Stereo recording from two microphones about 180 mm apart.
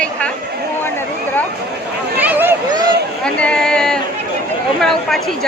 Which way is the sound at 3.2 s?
5° left (ahead or behind).